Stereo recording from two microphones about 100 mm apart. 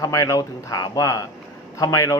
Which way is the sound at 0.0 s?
35° left (ahead or behind).